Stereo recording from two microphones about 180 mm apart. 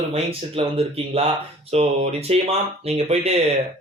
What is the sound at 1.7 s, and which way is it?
Speech, 35° right (ahead or behind).